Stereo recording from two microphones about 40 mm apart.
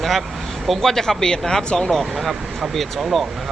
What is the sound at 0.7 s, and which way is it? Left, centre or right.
Speech, centre.